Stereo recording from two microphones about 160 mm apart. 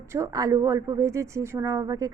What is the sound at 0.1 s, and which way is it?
A woman's voice, 20° right (ahead or behind).